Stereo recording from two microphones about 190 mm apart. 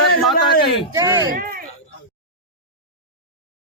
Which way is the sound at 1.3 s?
50° right (ahead or behind).